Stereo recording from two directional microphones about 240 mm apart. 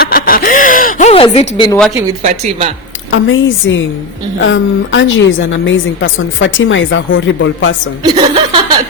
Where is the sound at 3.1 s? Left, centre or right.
Left.